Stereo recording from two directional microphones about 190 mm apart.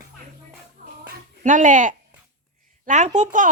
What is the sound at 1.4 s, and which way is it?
Speech, 40° right (ahead or behind).